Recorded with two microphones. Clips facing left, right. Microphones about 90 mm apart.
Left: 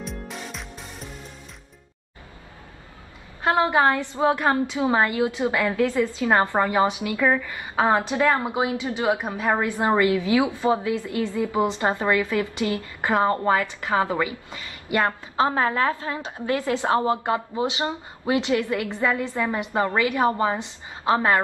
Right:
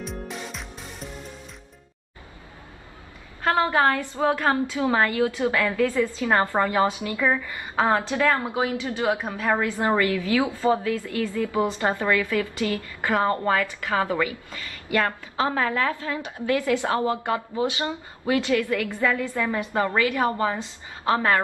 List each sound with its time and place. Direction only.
0.0 s music: centre (ahead or behind)
3.4 s a woman's voice: 15° left (ahead or behind)
7.2 s a woman's voice: centre (ahead or behind)
7.5 s a woman's voice: 15° left (ahead or behind)